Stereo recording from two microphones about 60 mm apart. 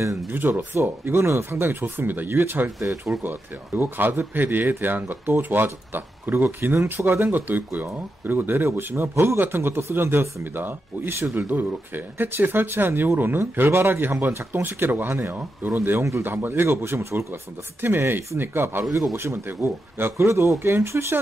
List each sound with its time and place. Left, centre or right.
0.3 s speech: right
1.0 s speech: right
3.1 s speech: right
6.7 s speech: right
7.2 s speech: right
8.6 s speech: right
16.0 s speech: right
16.3 s speech: right
17.8 s speech: right